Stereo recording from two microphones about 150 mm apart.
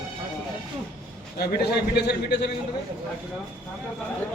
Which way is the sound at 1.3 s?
90° left.